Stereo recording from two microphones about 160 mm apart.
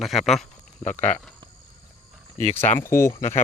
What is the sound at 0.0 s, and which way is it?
Speech, centre (ahead or behind).